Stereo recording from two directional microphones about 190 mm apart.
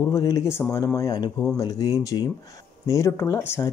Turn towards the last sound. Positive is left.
turn(degrees=15)  # may be behind; listen again after turning